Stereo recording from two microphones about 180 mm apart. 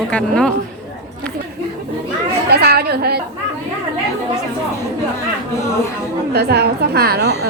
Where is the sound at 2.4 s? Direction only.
60° right (ahead or behind).